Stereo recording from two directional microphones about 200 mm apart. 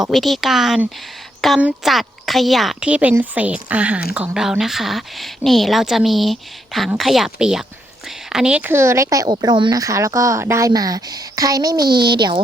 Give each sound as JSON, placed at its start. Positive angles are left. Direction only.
{"t": 0.0, "sound": "a woman's voice", "side_deg": 0}